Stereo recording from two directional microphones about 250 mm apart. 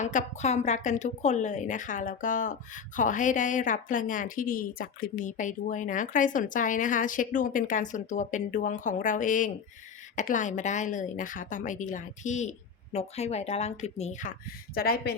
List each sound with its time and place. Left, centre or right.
0.0 s a woman's voice: left